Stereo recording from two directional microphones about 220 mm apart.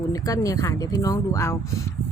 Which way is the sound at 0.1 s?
15° left (ahead or behind).